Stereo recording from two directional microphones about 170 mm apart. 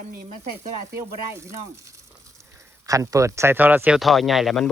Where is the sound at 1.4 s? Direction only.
15° right (ahead or behind).